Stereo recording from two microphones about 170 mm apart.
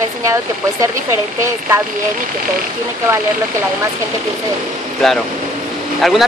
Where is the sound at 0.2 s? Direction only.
20° right (ahead or behind).